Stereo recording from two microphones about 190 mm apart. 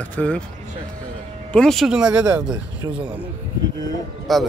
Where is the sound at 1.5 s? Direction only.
5° left (ahead or behind).